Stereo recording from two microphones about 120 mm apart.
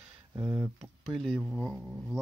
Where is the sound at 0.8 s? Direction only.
Centre (ahead or behind).